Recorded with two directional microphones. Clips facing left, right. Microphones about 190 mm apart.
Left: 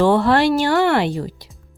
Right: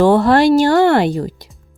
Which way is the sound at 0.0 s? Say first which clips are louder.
Right 4 dB; 40° right (ahead or behind).